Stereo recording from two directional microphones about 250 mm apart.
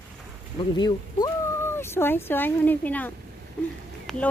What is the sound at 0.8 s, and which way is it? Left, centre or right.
Speech, centre.